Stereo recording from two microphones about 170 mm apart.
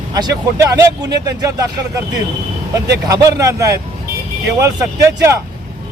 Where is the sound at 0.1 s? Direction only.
20° right (ahead or behind).